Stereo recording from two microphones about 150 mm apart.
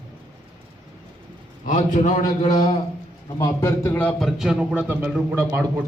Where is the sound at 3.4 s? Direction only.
25° left (ahead or behind).